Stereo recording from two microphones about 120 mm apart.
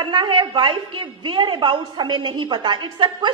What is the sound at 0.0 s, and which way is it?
A woman's voice, 40° right (ahead or behind).